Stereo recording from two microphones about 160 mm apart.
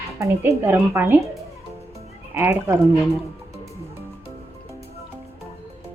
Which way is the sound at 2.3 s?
15° right (ahead or behind).